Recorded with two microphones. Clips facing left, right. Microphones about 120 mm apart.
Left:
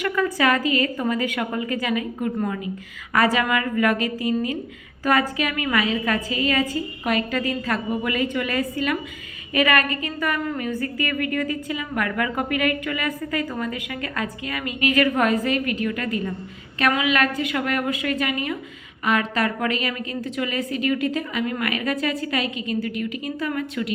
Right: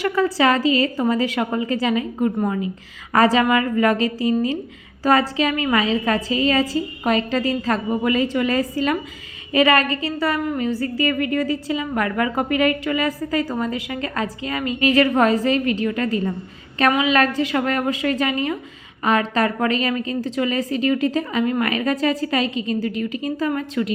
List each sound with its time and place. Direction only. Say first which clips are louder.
0.0 s a woman's voice: right 3 dB; 30° right (ahead or behind)